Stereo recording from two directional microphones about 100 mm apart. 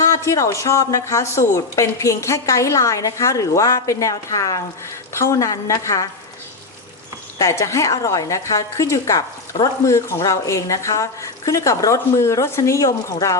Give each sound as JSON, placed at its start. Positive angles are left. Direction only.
{"t": 0.0, "sound": "speech", "side_deg": 30}
{"t": 7.3, "sound": "speech", "side_deg": 30}